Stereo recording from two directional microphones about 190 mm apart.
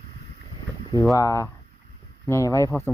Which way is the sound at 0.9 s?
15° left (ahead or behind).